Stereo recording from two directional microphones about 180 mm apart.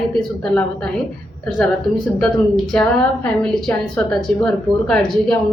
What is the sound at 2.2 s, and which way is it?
A woman's voice, centre (ahead or behind).